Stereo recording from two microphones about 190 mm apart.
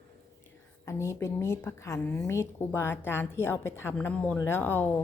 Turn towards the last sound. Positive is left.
turn(degrees=10)  # may be behind; listen again after turning